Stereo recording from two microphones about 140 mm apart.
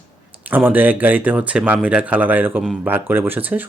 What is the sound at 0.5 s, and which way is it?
Speech, 10° right (ahead or behind).